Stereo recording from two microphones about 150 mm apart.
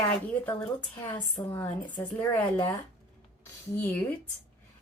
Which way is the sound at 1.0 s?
15° left (ahead or behind).